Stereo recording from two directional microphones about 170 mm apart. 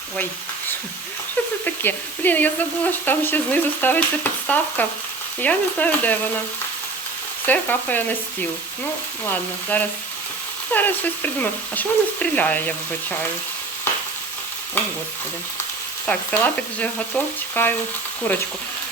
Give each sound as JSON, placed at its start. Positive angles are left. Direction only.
{"t": 1.6, "sound": "speech", "side_deg": 10}
{"t": 7.4, "sound": "speech", "side_deg": 10}
{"t": 16.0, "sound": "speech", "side_deg": 10}